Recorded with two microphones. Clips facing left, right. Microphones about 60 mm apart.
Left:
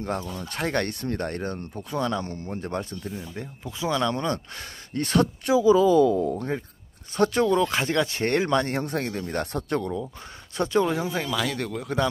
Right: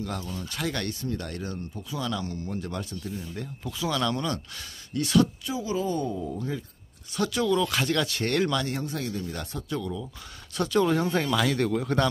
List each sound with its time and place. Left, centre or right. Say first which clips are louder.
0.0 s speech: left 4 dB; left
6.0 s speech: left 8 dB; left
7.2 s speech: left 4 dB; left
10.6 s speech: left 1 dB; left
10.9 s speech: right 2 dB; centre